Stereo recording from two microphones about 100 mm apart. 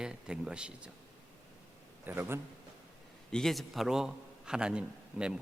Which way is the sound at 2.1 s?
25° right (ahead or behind).